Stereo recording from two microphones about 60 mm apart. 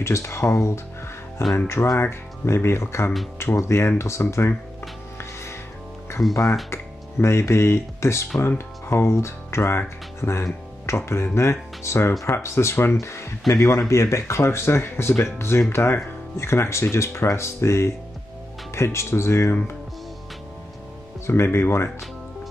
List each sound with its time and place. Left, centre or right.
0.0 s speech: left
6.7 s speech: left
21.3 s speech: left